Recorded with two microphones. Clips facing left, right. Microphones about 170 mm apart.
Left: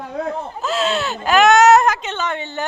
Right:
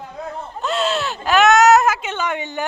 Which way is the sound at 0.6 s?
Centre (ahead or behind).